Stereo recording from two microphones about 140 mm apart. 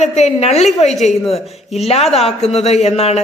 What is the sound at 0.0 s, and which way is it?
Speech, 55° left (ahead or behind).